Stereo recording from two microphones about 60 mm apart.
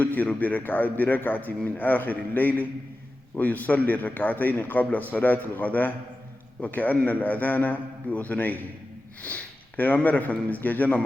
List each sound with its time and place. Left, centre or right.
0.0 s a man's voice: left